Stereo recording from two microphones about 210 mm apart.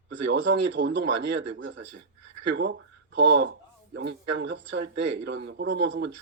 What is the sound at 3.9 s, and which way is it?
A man's voice, 60° right (ahead or behind).